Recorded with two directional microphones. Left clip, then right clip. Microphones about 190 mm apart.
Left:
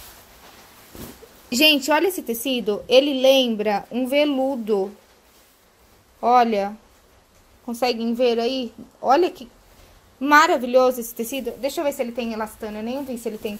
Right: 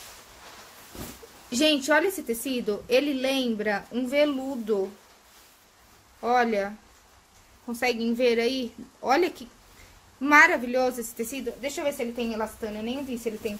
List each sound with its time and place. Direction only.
1.5 s a woman's voice: 35° left (ahead or behind)
6.2 s a woman's voice: 30° left (ahead or behind)
8.1 s a woman's voice: 10° left (ahead or behind)
10.2 s a woman's voice: 25° left (ahead or behind)